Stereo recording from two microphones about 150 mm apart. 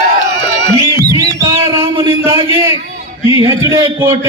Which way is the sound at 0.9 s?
25° right (ahead or behind).